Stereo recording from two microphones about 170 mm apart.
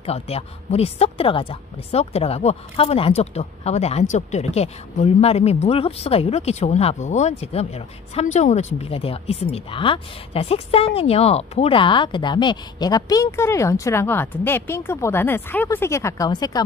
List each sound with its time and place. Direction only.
0.0 s a woman's voice: 35° left (ahead or behind)